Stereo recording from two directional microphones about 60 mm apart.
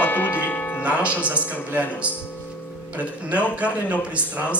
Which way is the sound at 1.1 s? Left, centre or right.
Left.